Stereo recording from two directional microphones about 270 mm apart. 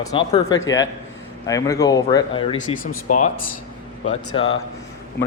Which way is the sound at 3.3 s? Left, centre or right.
Left.